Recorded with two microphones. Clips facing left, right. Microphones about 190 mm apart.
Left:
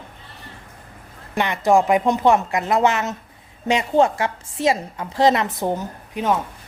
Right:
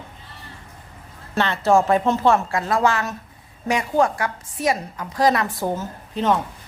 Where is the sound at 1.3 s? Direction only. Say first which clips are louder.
Left 1 dB; 15° left (ahead or behind).